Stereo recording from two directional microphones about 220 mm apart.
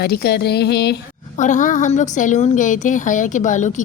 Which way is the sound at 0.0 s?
45° left (ahead or behind).